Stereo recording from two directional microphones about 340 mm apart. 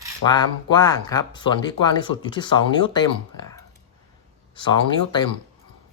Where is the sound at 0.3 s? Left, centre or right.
Centre.